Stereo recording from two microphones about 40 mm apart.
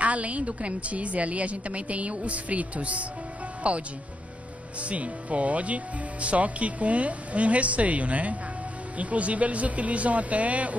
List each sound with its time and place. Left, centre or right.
0.0 s a woman's voice: right
4.8 s a woman's voice: right